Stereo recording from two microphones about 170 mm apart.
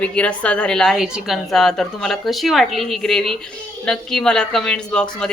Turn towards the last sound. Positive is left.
turn(degrees=5)  # may be behind; listen again after turning